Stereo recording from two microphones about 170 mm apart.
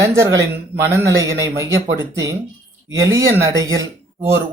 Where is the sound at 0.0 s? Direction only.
20° right (ahead or behind).